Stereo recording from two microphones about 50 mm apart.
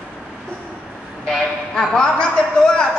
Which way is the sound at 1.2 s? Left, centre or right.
Centre.